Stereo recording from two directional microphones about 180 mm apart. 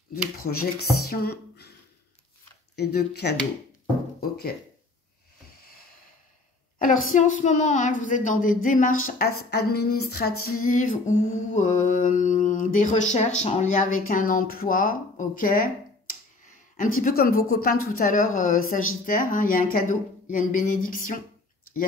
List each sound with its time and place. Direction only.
0.5 s speech: 60° left (ahead or behind)
2.7 s speech: 65° left (ahead or behind)
7.1 s a woman's voice: 45° left (ahead or behind)